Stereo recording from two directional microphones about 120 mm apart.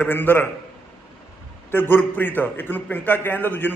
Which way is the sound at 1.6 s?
15° left (ahead or behind).